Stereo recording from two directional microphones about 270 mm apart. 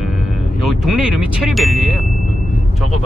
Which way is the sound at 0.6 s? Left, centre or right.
Centre.